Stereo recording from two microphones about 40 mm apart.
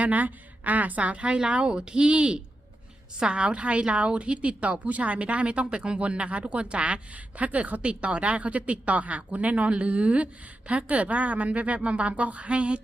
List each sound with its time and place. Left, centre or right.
0.0 s a woman's voice: right